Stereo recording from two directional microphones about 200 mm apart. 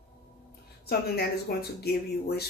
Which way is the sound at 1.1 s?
50° left (ahead or behind).